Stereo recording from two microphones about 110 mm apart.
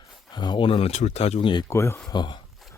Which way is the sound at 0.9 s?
80° left.